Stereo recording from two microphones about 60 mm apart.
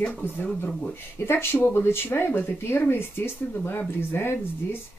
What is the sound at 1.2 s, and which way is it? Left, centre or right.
Speech, left.